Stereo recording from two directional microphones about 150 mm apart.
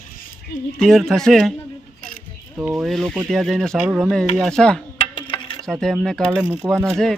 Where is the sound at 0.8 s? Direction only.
Centre (ahead or behind).